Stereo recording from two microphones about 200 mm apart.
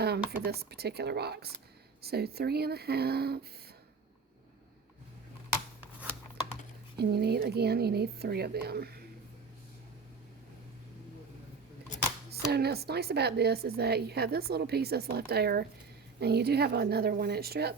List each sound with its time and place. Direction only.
0.3 s a woman's voice: 55° right (ahead or behind)
6.9 s a woman's voice: 55° right (ahead or behind)
12.3 s a woman's voice: 55° right (ahead or behind)